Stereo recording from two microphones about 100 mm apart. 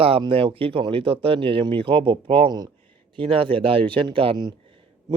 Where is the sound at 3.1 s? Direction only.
65° right (ahead or behind).